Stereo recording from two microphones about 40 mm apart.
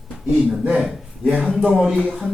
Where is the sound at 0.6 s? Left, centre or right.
Right.